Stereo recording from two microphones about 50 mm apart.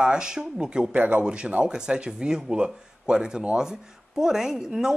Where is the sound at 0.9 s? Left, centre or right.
Right.